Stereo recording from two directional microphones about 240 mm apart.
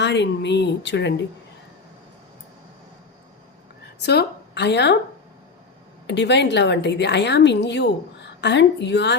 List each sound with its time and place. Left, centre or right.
0.0 s a woman's voice: left
4.0 s speech: left
6.1 s a woman's voice: left